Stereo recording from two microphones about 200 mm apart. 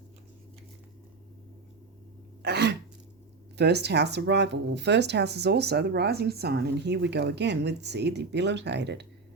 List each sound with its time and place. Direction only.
2.4 s throat clearing: 55° right (ahead or behind)
3.6 s speech: 55° right (ahead or behind)